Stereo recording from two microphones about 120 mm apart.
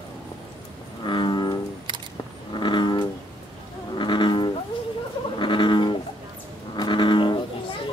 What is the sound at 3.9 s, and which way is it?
Livestock, 40° left (ahead or behind).